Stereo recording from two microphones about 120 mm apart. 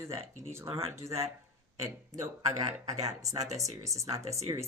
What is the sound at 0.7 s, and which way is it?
Speech, 55° right (ahead or behind).